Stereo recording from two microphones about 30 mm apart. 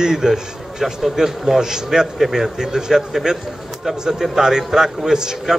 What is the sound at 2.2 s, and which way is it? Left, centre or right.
Speech, centre.